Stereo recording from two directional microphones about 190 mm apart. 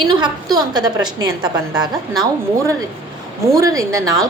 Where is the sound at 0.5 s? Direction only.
20° right (ahead or behind).